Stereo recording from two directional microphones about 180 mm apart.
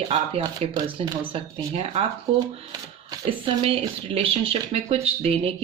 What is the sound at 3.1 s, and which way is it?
Speech, 30° right (ahead or behind).